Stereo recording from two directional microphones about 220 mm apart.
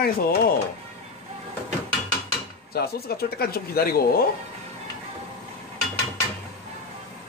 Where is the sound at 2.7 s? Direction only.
45° left (ahead or behind).